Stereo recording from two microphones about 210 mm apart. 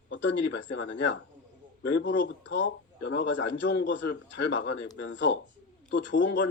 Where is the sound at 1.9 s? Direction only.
60° left (ahead or behind).